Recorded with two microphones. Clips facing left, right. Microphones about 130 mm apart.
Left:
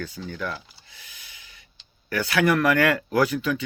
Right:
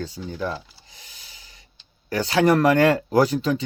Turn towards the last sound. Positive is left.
turn(degrees=-35)  # may be behind; listen again after turning